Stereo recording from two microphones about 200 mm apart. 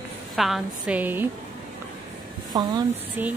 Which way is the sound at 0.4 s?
5° right (ahead or behind).